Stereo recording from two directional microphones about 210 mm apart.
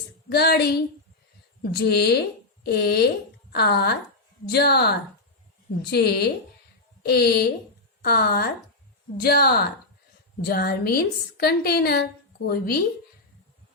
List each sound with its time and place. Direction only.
0.3 s a woman's voice: 50° left (ahead or behind)
1.7 s a woman's voice: 50° left (ahead or behind)